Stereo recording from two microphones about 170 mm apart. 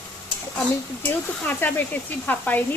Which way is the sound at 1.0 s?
10° left (ahead or behind).